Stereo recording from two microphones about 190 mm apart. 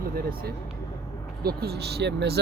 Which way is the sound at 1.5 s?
60° right (ahead or behind).